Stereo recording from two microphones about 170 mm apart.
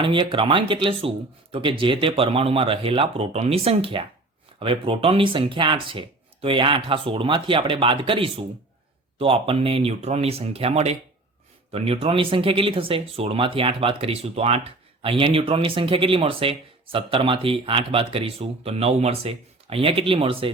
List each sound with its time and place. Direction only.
0.0 s speech: 30° right (ahead or behind)